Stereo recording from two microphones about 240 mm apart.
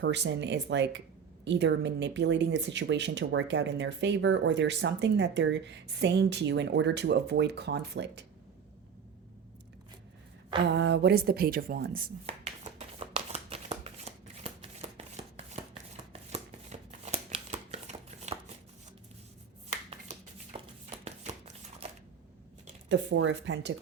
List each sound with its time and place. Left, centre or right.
0.0 s speech: right
10.8 s speech: right
12.2 s shuffling cards: right
16.3 s a sound: right
19.7 s a sound: right
21.0 s shuffling cards: right
22.9 s speech: right